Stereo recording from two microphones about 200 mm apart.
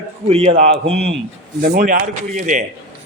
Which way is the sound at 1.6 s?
45° right (ahead or behind).